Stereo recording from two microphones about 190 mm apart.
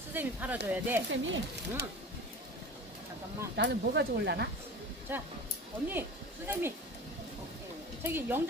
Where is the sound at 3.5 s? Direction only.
65° right (ahead or behind).